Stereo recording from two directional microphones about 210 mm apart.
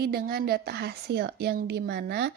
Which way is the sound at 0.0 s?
45° right (ahead or behind).